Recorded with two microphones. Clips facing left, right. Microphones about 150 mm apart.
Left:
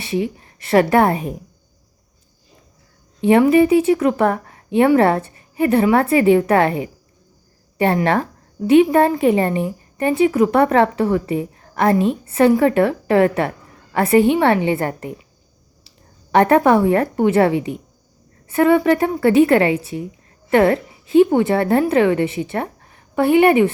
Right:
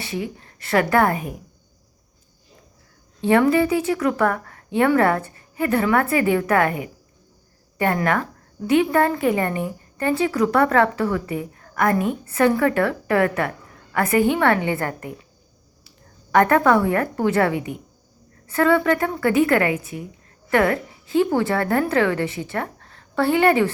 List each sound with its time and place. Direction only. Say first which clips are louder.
0.0 s a woman's voice: left 6 dB; 25° left (ahead or behind)
3.2 s a woman's voice: left 5 dB; 20° left (ahead or behind)
16.3 s a woman's voice: left 3 dB; 25° left (ahead or behind)